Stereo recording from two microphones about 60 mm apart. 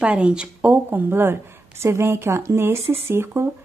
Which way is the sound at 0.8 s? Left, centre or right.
Right.